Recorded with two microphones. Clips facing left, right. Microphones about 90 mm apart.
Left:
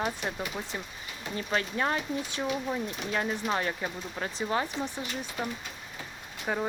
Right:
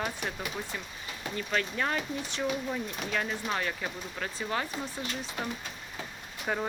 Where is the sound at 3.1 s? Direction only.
25° left (ahead or behind).